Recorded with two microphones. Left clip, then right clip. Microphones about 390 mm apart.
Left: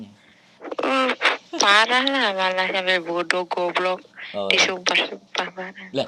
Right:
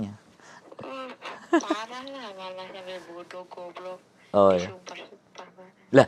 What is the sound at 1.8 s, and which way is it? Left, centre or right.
Speech, left.